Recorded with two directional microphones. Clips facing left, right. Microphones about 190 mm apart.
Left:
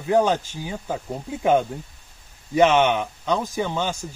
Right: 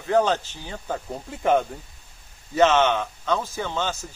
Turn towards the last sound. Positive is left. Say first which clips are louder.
# left 3 dB
turn(degrees=15)  # may be behind; listen again after turning